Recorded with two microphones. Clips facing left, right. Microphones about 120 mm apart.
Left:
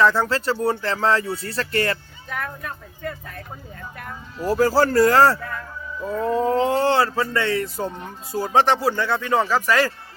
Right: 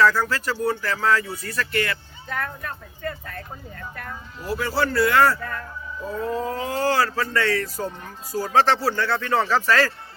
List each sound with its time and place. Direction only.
0.0 s speech: 25° left (ahead or behind)
2.3 s speech: 10° left (ahead or behind)
4.4 s speech: 40° left (ahead or behind); by 9.9 s 15° left (ahead or behind)